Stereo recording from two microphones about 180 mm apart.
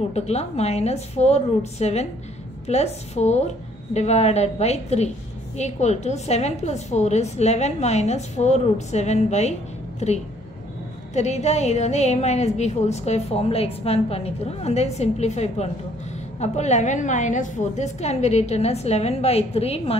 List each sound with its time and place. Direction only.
0.1 s a woman's voice: 35° left (ahead or behind)